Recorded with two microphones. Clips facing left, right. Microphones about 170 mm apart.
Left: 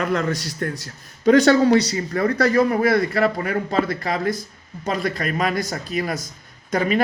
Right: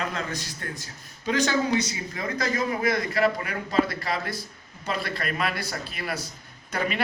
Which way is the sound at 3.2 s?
45° left (ahead or behind).